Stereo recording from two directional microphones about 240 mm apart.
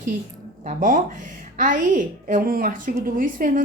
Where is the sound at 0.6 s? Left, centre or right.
Right.